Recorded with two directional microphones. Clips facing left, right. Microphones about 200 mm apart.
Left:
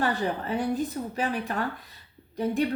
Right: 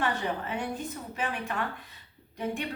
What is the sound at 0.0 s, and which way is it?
Speech, 35° left (ahead or behind).